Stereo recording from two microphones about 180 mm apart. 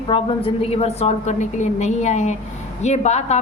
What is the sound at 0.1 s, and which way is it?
A woman's voice, 30° left (ahead or behind).